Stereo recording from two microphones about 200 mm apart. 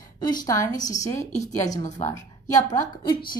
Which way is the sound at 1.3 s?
35° left (ahead or behind).